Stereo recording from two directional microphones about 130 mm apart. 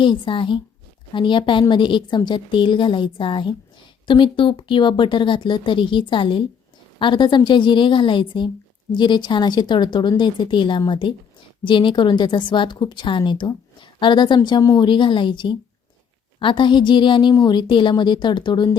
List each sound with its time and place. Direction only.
0.0 s a woman's voice: 40° left (ahead or behind)